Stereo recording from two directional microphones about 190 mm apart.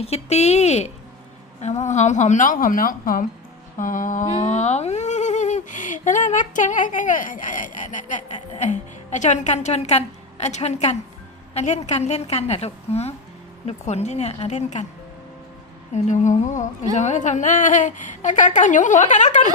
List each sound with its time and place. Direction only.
0.0 s speech: 35° left (ahead or behind)
3.8 s mantra: 45° left (ahead or behind)
4.4 s speech: 35° left (ahead or behind)
15.9 s speech: 35° left (ahead or behind)